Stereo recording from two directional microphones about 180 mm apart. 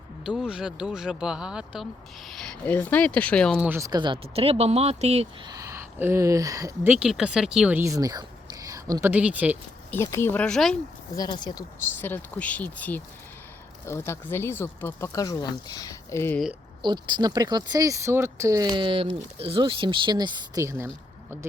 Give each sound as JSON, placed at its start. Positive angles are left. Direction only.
{"t": 0.3, "sound": "speech", "side_deg": -5}
{"t": 3.6, "sound": "speech", "side_deg": -15}
{"t": 5.5, "sound": "speech", "side_deg": -15}
{"t": 6.9, "sound": "speech", "side_deg": -5}
{"t": 9.9, "sound": "speech", "side_deg": 15}
{"t": 11.1, "sound": "speech", "side_deg": 20}
{"t": 11.9, "sound": "speech", "side_deg": 10}
{"t": 16.8, "sound": "speech", "side_deg": -25}